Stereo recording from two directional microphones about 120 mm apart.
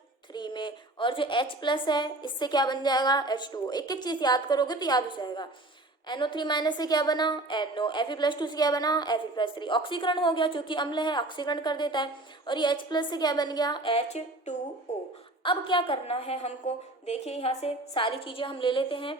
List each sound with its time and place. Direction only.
0.3 s a woman's voice: 40° left (ahead or behind)
13.9 s a woman's voice: 70° left (ahead or behind)
14.9 s a sound: 65° left (ahead or behind)
15.4 s a woman's voice: 45° left (ahead or behind)